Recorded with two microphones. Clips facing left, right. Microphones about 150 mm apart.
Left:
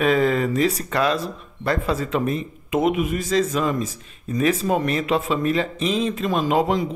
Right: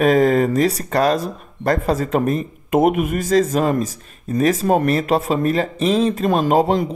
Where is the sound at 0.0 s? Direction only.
40° right (ahead or behind).